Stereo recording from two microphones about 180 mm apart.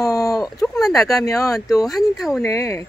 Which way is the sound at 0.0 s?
20° left (ahead or behind).